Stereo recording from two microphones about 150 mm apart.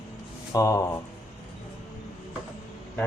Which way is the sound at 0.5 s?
20° left (ahead or behind).